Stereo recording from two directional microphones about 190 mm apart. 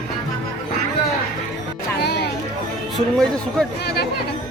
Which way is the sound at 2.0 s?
60° left (ahead or behind).